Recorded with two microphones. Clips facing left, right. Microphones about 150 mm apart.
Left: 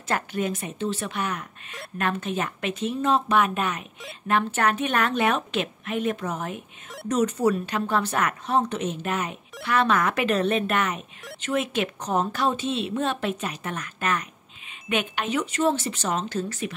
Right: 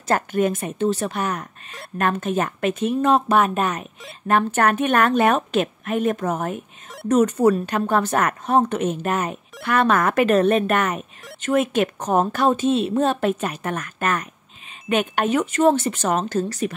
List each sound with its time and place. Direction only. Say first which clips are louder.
0.1 s a woman's voice: right 6 dB; 50° right (ahead or behind)
3.3 s a woman's voice: right 4 dB; 40° right (ahead or behind)